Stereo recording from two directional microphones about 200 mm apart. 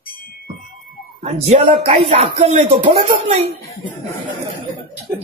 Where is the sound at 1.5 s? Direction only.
30° right (ahead or behind).